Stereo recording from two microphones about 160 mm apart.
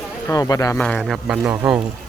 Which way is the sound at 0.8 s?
5° left (ahead or behind).